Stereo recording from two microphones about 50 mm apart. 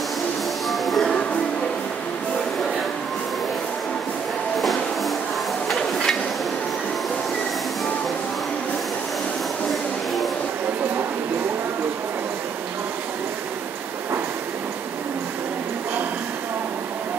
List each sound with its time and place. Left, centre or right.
0.7 s music: centre
4.6 s music: centre
5.8 s a sound: centre